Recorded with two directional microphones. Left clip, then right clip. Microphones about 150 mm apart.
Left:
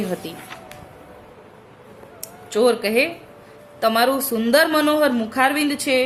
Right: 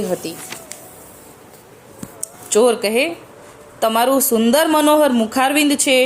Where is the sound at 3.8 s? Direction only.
30° right (ahead or behind).